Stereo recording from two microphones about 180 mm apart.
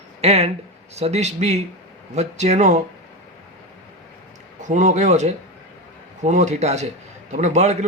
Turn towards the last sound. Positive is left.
turn(degrees=-40)  # may be behind; listen again after turning